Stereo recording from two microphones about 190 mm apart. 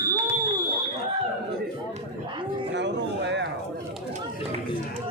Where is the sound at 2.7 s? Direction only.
65° right (ahead or behind).